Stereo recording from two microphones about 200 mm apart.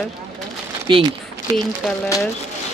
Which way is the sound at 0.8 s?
20° right (ahead or behind).